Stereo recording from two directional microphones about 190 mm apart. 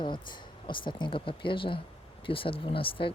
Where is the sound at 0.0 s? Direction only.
25° left (ahead or behind).